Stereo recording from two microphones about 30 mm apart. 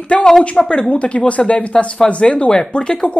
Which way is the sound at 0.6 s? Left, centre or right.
Centre.